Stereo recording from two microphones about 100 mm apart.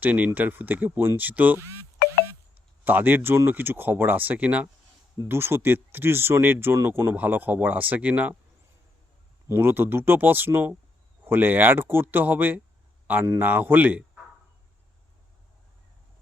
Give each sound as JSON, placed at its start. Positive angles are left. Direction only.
{"t": 0.0, "sound": "speech", "side_deg": -15}
{"t": 9.5, "sound": "speech", "side_deg": -20}